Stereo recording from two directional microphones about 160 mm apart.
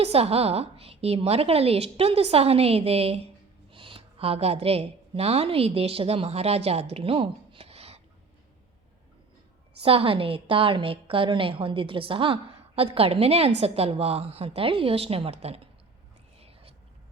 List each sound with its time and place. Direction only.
0.0 s a woman's voice: 40° right (ahead or behind)
6.9 s a sound: 35° right (ahead or behind)
9.8 s a woman's voice: 35° right (ahead or behind)
16.4 s whispering: 35° right (ahead or behind)